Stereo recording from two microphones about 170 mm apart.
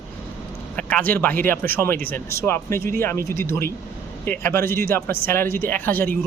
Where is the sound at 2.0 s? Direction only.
60° right (ahead or behind).